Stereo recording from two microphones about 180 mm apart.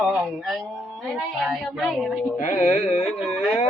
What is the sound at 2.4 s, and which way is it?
Speech, 45° left (ahead or behind).